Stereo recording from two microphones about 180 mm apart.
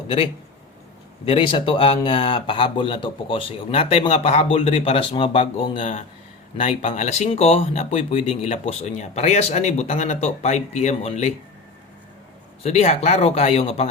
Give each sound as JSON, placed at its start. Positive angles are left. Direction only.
{"t": 1.2, "sound": "speech", "side_deg": 30}
{"t": 12.6, "sound": "speech", "side_deg": 40}